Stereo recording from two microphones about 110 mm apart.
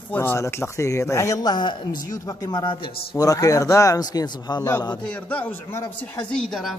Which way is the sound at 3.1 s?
35° left (ahead or behind).